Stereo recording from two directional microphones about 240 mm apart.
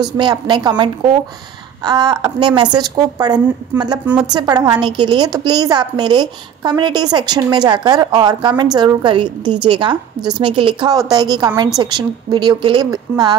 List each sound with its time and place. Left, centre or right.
0.2 s a woman's voice: centre
4.0 s a woman's voice: centre
4.3 s a woman's voice: centre